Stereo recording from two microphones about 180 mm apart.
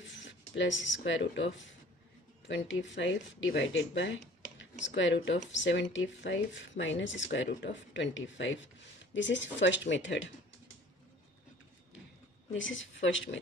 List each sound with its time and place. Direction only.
0.0 s speech: 90° left
12.5 s speech: 90° left